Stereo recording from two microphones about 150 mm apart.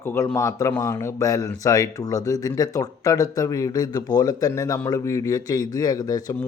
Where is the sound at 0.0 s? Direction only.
15° left (ahead or behind).